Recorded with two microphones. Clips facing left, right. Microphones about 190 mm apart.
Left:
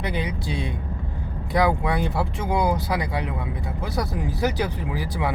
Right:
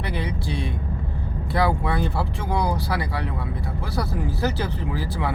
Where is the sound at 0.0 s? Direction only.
20° left (ahead or behind).